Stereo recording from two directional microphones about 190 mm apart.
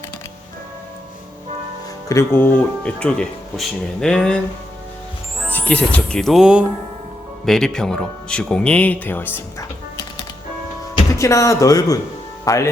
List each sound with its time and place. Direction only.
2.0 s speech: 15° left (ahead or behind)
5.5 s speech: 10° left (ahead or behind)
10.9 s speech: 15° left (ahead or behind)